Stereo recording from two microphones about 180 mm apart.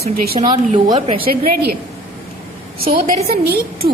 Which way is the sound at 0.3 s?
50° right (ahead or behind).